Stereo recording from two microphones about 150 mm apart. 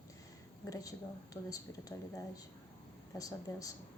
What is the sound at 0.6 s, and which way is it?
Speech, 25° left (ahead or behind).